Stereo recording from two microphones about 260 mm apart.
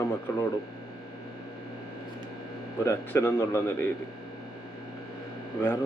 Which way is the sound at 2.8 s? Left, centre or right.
Centre.